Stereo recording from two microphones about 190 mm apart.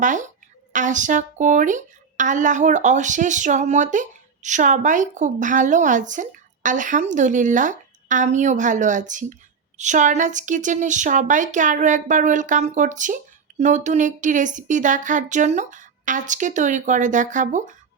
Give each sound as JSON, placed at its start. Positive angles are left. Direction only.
{"t": 0.0, "sound": "a woman's voice", "side_deg": -40}